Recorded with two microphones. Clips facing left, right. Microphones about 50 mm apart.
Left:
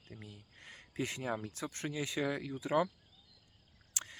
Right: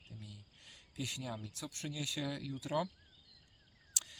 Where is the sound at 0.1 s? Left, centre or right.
Left.